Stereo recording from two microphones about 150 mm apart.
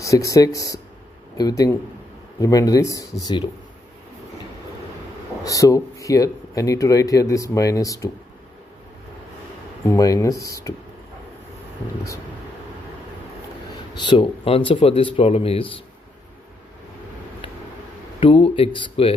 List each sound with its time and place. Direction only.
0.0 s speech: 20° left (ahead or behind)
5.4 s speech: 20° left (ahead or behind)
9.8 s speech: 20° left (ahead or behind)
13.9 s speech: 35° left (ahead or behind)
18.2 s speech: 35° left (ahead or behind)